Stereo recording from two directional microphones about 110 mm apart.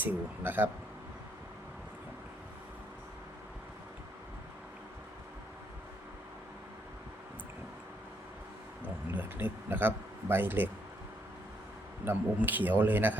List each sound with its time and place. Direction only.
0.0 s a man's voice: 15° right (ahead or behind)
8.8 s speech: 15° right (ahead or behind)
12.0 s a man's voice: 15° right (ahead or behind)